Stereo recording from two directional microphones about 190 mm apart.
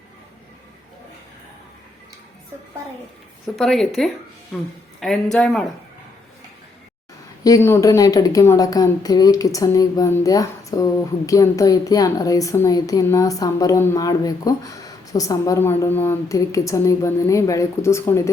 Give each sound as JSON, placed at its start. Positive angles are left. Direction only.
{"t": 3.6, "sound": "speech", "side_deg": 0}
{"t": 7.4, "sound": "a woman's voice", "side_deg": 15}